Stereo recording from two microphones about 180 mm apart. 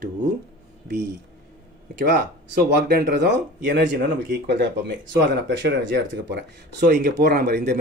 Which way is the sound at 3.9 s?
60° right (ahead or behind).